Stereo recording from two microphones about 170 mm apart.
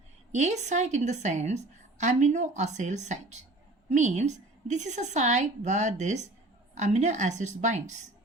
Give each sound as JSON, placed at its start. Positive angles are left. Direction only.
{"t": 0.3, "sound": "a woman's voice", "side_deg": -45}